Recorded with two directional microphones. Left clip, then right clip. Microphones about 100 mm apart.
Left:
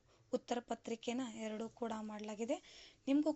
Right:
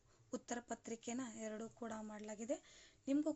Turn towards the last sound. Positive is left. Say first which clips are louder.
# left 4 dB
turn(degrees=25)  # may be behind; listen again after turning